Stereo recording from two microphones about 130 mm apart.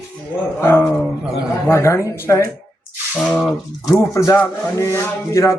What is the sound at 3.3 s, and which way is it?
Speech, centre (ahead or behind).